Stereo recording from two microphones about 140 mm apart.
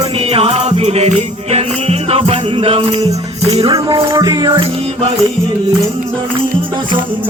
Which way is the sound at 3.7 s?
25° right (ahead or behind).